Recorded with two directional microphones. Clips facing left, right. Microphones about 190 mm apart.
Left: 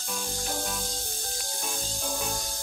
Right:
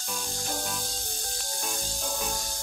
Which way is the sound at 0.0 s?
Centre (ahead or behind).